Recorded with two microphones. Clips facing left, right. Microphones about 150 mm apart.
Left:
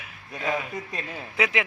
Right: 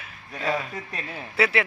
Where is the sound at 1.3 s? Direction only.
15° left (ahead or behind).